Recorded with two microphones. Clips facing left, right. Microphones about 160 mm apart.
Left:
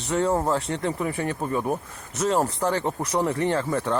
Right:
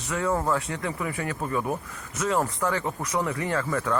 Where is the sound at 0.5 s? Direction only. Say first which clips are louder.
Left 3 dB; 30° left (ahead or behind).